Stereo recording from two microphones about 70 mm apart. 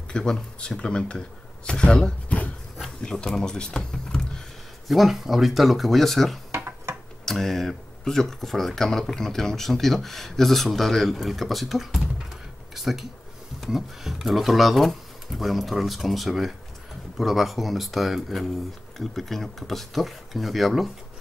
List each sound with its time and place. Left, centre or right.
0.1 s speech: centre
4.8 s speech: centre
6.5 s a sound: right
7.2 s speech: centre